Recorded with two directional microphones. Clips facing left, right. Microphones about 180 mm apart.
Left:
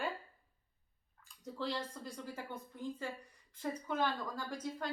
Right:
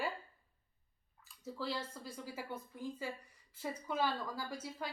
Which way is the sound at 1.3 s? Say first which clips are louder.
Left 1 dB; 5° right (ahead or behind).